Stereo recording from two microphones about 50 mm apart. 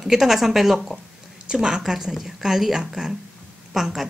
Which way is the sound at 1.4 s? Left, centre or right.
Centre.